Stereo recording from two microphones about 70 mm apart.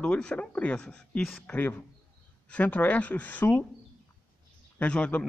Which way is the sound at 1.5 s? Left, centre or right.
Left.